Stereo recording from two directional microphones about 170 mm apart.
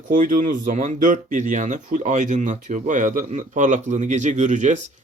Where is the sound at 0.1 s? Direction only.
50° right (ahead or behind).